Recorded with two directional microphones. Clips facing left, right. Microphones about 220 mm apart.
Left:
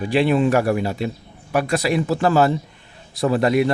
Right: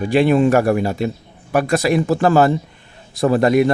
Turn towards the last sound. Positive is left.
turn(degrees=-45)  # may be behind; listen again after turning